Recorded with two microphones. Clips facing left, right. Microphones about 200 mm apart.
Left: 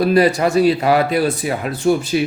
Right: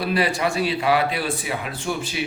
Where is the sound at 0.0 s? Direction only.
40° left (ahead or behind).